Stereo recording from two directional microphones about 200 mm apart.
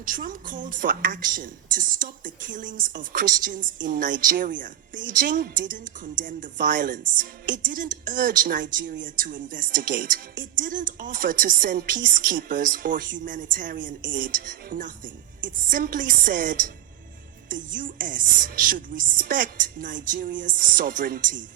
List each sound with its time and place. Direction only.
0.0 s a woman's voice: 45° right (ahead or behind)